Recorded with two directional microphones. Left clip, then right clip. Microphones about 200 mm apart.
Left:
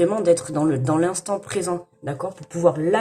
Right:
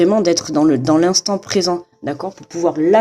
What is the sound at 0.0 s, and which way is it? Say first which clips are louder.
Speech: right 4 dB; 40° right (ahead or behind).